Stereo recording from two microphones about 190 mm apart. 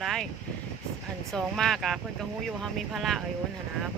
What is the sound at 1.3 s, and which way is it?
Speech, centre (ahead or behind).